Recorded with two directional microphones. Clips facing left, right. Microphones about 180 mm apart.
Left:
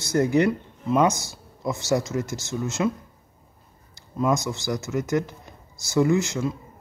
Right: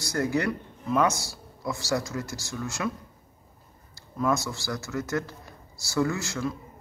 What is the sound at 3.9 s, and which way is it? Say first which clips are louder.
Speech: left 3 dB; 20° left (ahead or behind).